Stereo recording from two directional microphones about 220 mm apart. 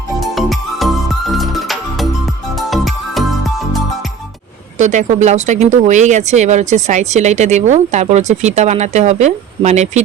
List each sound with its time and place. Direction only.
0.2 s music: centre (ahead or behind)
4.8 s speech: 35° right (ahead or behind)